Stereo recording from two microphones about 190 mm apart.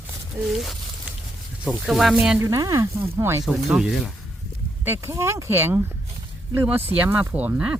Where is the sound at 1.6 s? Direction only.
Centre (ahead or behind).